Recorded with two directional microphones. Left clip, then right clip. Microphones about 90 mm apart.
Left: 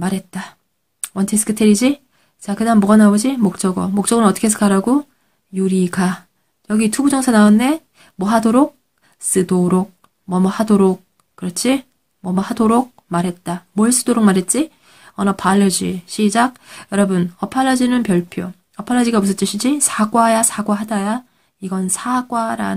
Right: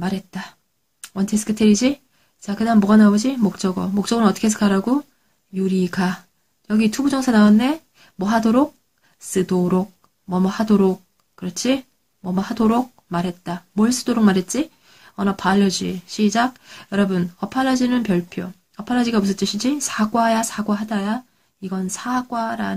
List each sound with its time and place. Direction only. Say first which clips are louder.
0.0 s speech: left 3 dB; 30° left (ahead or behind)